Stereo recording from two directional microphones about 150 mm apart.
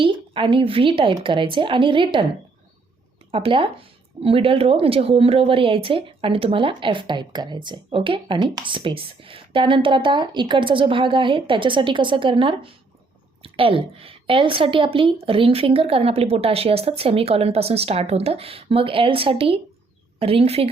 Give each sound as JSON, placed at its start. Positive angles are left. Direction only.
{"t": 0.0, "sound": "a woman's voice", "side_deg": -35}
{"t": 3.3, "sound": "a woman's voice", "side_deg": -35}